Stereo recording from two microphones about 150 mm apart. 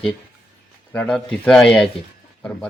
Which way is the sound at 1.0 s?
5° left (ahead or behind).